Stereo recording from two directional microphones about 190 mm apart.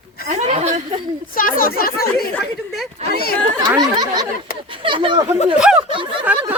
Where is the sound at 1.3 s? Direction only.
50° left (ahead or behind).